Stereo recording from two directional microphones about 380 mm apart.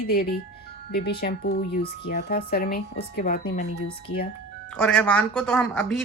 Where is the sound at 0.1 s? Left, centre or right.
Left.